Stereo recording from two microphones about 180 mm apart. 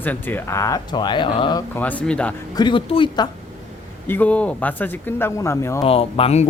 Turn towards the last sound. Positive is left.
turn(degrees=35)  # may be behind; listen again after turning